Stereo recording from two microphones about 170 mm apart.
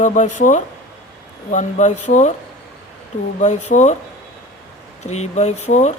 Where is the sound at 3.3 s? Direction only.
45° left (ahead or behind).